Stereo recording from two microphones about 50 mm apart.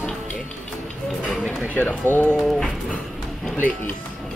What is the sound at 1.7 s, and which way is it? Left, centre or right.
Speech, left.